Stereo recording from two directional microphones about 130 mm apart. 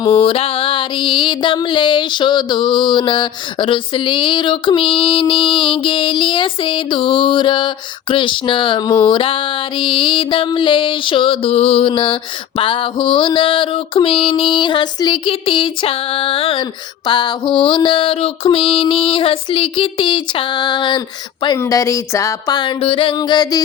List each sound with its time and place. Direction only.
0.0 s music: 45° left (ahead or behind)
21.6 s music: 25° left (ahead or behind)